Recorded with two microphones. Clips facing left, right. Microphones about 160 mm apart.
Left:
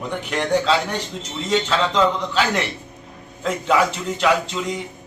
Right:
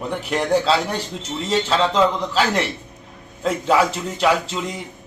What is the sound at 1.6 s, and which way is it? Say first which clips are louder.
Speech: right 2 dB; 5° right (ahead or behind).